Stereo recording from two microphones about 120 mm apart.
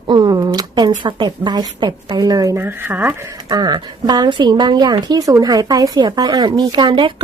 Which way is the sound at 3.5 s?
35° right (ahead or behind).